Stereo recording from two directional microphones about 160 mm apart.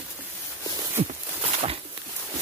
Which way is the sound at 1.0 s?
40° right (ahead or behind).